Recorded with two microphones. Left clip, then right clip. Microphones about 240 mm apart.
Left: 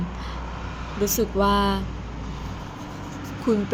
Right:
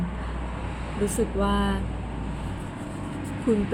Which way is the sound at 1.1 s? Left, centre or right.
Left.